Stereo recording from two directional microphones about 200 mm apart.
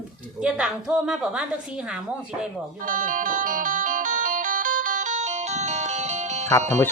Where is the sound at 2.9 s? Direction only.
40° right (ahead or behind).